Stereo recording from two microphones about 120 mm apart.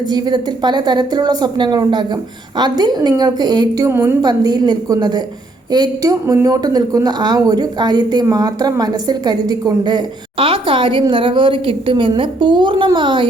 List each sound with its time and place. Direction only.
0.1 s speech: 35° right (ahead or behind)
3.8 s a woman's voice: 20° right (ahead or behind)
4.2 s speech: 35° right (ahead or behind)
10.3 s a woman's voice: 50° right (ahead or behind)